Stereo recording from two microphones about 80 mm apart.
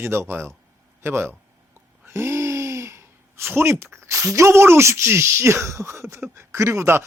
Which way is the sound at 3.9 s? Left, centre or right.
Right.